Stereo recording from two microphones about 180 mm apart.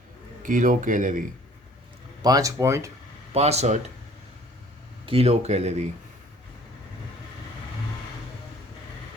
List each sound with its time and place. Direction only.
0.4 s speech: 50° right (ahead or behind)
2.2 s speech: 20° right (ahead or behind)
3.3 s speech: 35° right (ahead or behind)
5.0 s speech: 35° right (ahead or behind)